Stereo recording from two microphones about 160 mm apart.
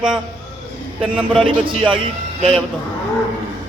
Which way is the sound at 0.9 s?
35° right (ahead or behind).